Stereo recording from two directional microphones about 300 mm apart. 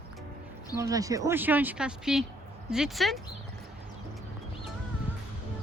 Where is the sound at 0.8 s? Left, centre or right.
Centre.